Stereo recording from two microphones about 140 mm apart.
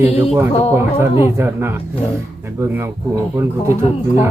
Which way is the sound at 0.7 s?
20° right (ahead or behind).